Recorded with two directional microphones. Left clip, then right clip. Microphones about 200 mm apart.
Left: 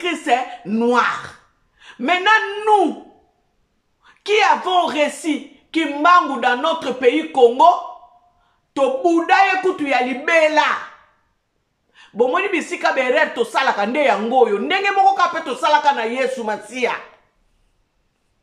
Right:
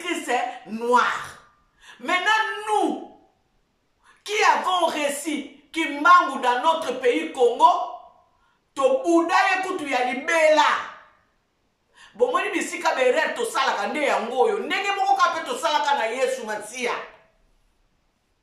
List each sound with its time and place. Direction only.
0.0 s speech: 45° left (ahead or behind)
4.0 s speech: 45° left (ahead or behind)
8.7 s a woman's voice: 45° left (ahead or behind)
11.9 s a woman's voice: 40° left (ahead or behind)